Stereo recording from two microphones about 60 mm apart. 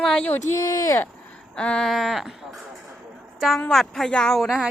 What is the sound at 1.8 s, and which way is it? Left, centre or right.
A woman's voice, centre.